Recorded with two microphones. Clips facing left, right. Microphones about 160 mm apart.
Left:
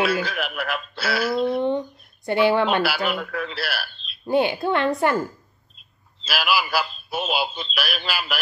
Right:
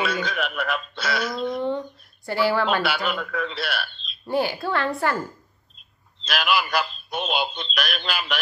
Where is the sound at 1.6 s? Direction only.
20° left (ahead or behind).